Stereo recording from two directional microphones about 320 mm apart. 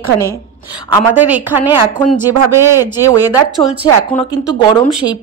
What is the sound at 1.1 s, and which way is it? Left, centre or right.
A woman's voice, centre.